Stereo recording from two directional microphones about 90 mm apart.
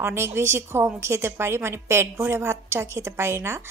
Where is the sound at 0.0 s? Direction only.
30° right (ahead or behind).